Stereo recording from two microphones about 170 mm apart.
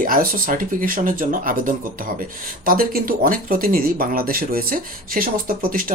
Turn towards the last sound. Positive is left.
turn(degrees=-55)  # may be behind; listen again after turning